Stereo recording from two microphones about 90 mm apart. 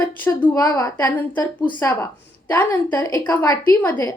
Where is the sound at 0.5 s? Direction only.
45° left (ahead or behind).